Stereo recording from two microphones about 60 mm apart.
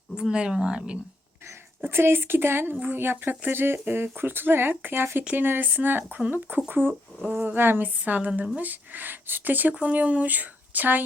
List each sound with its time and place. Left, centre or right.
0.2 s speech: centre
1.8 s speech: right